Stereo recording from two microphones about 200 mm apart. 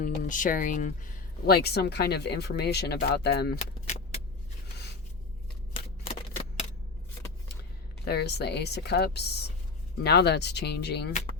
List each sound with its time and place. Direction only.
0.0 s speech: 40° left (ahead or behind)
5.7 s shuffling cards: 30° left (ahead or behind)
8.0 s speech: 55° left (ahead or behind)